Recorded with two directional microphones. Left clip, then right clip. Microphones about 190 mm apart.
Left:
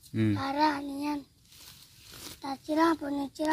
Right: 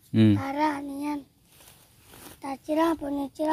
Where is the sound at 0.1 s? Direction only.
45° right (ahead or behind).